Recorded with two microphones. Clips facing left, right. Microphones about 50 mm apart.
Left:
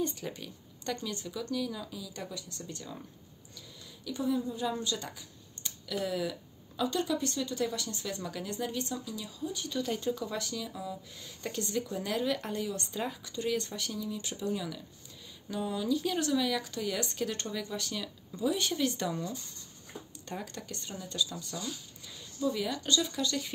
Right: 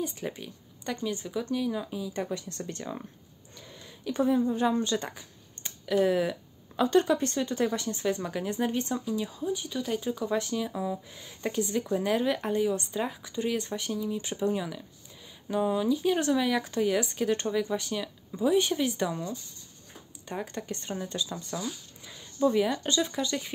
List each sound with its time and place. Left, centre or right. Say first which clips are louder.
0.1 s speech: right 4 dB; centre
9.6 s speech: right 2 dB; centre
10.3 s speech: right 8 dB; right
11.1 s speech: right 6 dB; centre
17.0 s speech: right 6 dB; centre
20.5 s speech: right 7 dB; right